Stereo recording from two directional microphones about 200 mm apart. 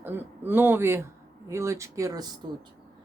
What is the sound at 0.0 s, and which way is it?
A woman's voice, 10° right (ahead or behind).